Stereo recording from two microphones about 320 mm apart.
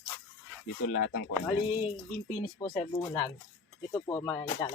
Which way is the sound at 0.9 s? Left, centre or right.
Left.